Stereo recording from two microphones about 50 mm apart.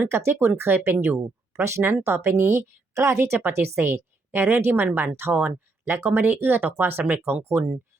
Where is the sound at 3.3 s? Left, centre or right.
Right.